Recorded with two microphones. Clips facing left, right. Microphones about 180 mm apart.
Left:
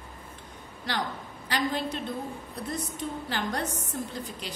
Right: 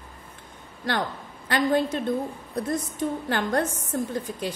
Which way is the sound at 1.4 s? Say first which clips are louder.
Right 7 dB; 50° right (ahead or behind).